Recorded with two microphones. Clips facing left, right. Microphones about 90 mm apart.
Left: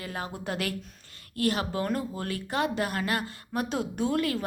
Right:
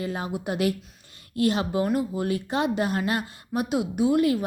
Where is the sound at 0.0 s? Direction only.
20° right (ahead or behind).